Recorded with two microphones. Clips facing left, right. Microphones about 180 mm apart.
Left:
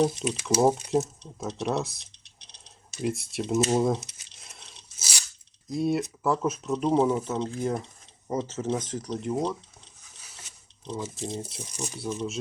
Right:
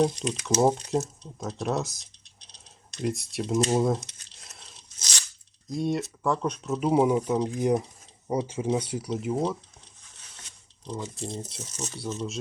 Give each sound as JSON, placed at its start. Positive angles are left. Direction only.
{"t": 0.0, "sound": "speech", "side_deg": 5}
{"t": 2.9, "sound": "crumpling", "side_deg": 0}
{"t": 5.6, "sound": "speech", "side_deg": 0}
{"t": 10.2, "sound": "a sound", "side_deg": 5}
{"t": 11.3, "sound": "speech", "side_deg": 10}